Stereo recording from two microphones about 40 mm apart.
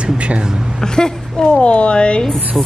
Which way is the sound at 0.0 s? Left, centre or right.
Right.